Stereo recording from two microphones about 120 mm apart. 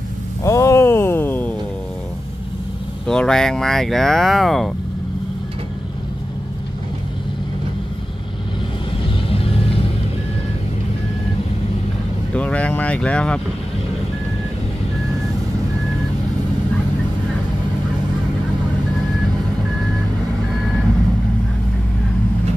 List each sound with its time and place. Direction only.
0.4 s a sound: 25° left (ahead or behind)
3.1 s speech: 5° left (ahead or behind)
9.0 s music: 50° left (ahead or behind)
12.4 s speech: 10° left (ahead or behind)